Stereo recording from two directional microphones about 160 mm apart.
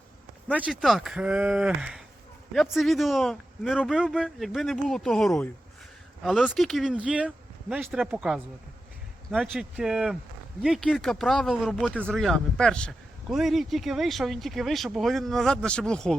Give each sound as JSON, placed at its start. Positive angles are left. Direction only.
{"t": 0.5, "sound": "speech", "side_deg": -5}